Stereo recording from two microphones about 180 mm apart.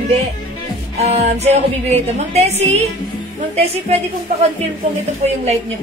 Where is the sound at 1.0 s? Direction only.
35° right (ahead or behind).